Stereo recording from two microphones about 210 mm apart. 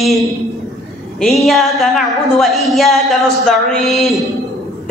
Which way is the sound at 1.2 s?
Centre (ahead or behind).